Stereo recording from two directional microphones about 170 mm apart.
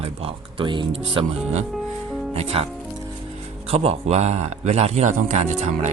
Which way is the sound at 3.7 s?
35° right (ahead or behind).